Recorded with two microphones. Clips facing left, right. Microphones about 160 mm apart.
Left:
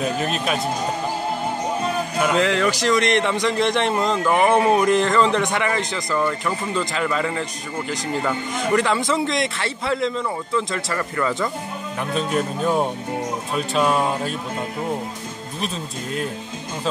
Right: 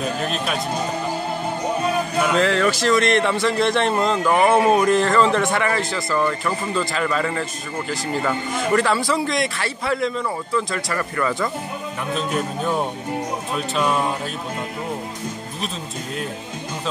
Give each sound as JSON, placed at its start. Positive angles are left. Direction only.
{"t": 0.2, "sound": "speech", "side_deg": 0}
{"t": 2.3, "sound": "a man's voice", "side_deg": 20}
{"t": 8.7, "sound": "speech", "side_deg": 20}
{"t": 12.1, "sound": "speech", "side_deg": 0}